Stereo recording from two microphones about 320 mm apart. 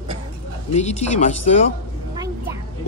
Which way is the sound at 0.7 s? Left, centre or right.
Left.